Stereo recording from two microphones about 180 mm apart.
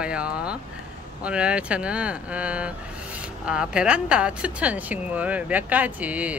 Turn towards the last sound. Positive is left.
turn(degrees=-10)  # may be behind; listen again after turning